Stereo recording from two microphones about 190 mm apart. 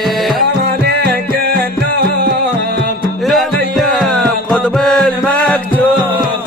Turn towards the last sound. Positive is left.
turn(degrees=5)  # may be behind; listen again after turning